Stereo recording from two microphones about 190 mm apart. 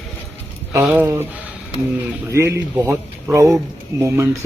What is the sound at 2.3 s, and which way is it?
Speech, 15° right (ahead or behind).